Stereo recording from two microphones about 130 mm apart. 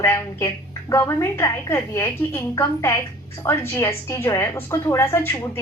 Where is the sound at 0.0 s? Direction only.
20° left (ahead or behind).